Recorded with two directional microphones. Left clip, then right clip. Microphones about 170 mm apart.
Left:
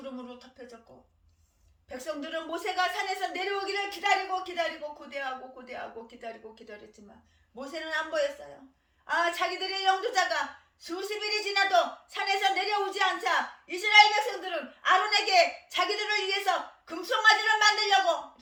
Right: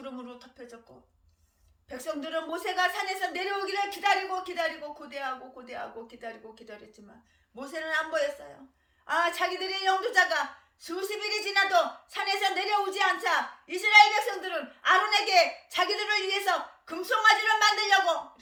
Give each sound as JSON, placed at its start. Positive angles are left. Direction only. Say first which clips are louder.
{"t": 0.0, "sound": "a sound", "louder": "even", "side_deg": -25}
{"t": 1.9, "sound": "a woman's voice", "louder": "right 2 dB", "side_deg": -20}
{"t": 9.2, "sound": "a woman's voice", "louder": "right 1 dB", "side_deg": -20}